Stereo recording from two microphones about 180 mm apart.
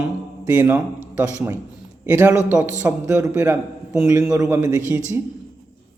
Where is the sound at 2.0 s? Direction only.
10° right (ahead or behind).